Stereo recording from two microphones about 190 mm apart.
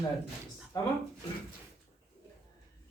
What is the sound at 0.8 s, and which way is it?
Speech, 15° left (ahead or behind).